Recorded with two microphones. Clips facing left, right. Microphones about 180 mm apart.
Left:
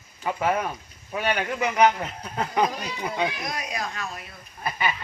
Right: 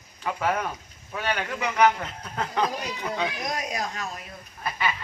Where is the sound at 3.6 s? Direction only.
40° right (ahead or behind).